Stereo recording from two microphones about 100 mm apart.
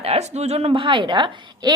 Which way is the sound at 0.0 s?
90° right.